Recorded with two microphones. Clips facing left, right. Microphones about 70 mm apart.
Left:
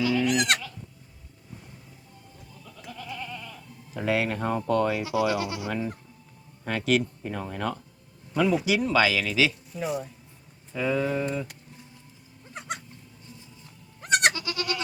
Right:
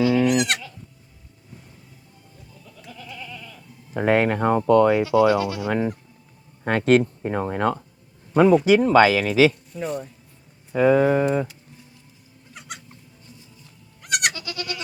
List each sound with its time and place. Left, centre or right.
0.0 s goat: right
3.1 s goat: left
3.9 s speech: right
9.7 s speech: centre
10.7 s speech: right
12.5 s squeak: left
14.0 s goat: left